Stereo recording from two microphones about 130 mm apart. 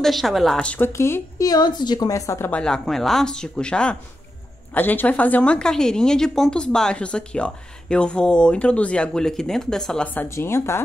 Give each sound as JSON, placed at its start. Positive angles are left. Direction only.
{"t": 0.0, "sound": "a woman's voice", "side_deg": 0}
{"t": 2.6, "sound": "a woman's voice", "side_deg": 5}